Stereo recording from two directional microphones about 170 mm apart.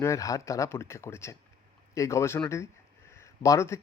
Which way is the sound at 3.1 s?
15° left (ahead or behind).